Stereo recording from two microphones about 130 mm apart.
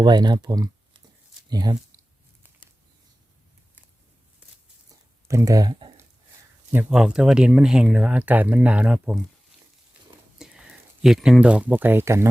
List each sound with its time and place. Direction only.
0.0 s speech: 35° right (ahead or behind)
5.3 s speech: 25° right (ahead or behind)
6.9 s speech: 5° right (ahead or behind)
10.3 s speech: 5° right (ahead or behind); by 12.3 s 20° right (ahead or behind)